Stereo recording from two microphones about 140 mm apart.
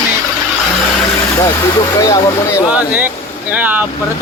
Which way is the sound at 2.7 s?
10° right (ahead or behind).